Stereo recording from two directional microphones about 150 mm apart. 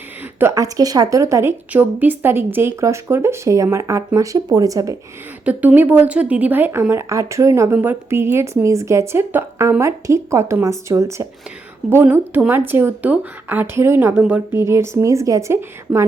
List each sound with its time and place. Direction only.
0.3 s speech: 20° right (ahead or behind)
5.5 s speech: 10° right (ahead or behind)